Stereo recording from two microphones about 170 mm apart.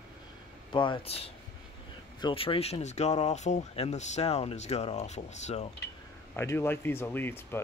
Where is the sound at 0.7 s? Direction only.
30° left (ahead or behind).